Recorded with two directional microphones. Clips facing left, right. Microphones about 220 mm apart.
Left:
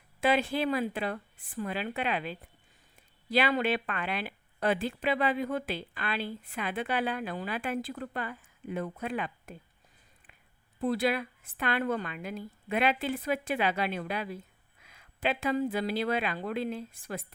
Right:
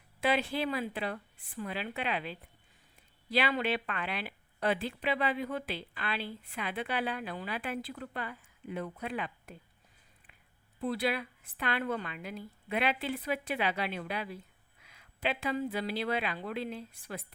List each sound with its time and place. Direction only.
0.2 s a woman's voice: 50° left (ahead or behind)
10.8 s a woman's voice: 45° left (ahead or behind)